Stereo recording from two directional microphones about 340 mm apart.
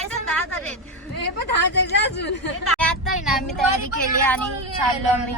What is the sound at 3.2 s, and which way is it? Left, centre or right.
Speech, centre.